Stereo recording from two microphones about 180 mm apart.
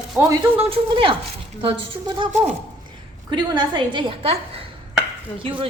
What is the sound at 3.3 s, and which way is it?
A woman's voice, 25° right (ahead or behind).